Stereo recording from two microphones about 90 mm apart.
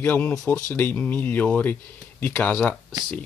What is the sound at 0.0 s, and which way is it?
Speech, 20° left (ahead or behind).